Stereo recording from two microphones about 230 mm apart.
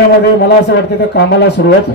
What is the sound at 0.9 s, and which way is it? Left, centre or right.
Speech, left.